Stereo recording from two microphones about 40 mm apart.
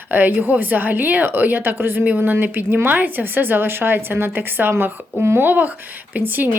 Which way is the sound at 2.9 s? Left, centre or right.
Right.